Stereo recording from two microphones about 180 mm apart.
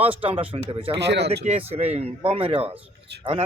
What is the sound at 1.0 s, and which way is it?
Speech, 70° right (ahead or behind).